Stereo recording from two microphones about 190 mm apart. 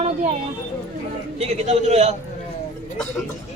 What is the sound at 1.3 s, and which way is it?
Speech, 35° right (ahead or behind).